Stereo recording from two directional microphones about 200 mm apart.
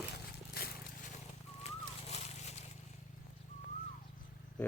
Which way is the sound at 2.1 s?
30° left (ahead or behind).